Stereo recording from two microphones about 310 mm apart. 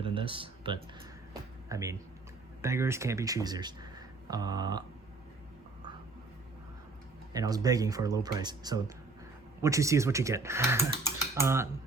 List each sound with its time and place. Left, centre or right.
0.0 s a sound: centre
1.7 s speech: centre
7.3 s speech: centre